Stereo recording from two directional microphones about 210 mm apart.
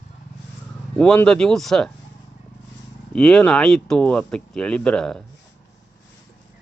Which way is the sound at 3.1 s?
5° left (ahead or behind).